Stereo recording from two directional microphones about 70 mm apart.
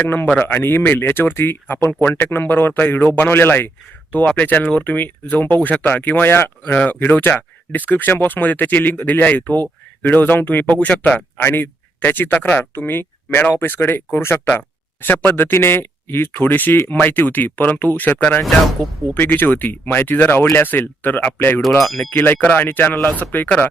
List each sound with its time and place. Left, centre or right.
0.0 s speech: left
11.4 s speech: left